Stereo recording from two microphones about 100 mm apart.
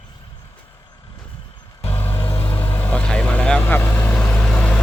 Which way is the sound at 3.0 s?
10° left (ahead or behind).